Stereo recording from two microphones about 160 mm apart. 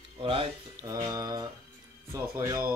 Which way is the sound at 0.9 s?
20° right (ahead or behind).